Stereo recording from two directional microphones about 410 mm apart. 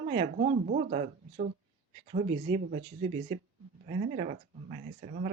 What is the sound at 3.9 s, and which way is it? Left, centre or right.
Speech, centre.